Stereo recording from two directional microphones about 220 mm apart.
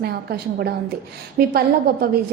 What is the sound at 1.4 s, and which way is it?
Speech, 45° right (ahead or behind).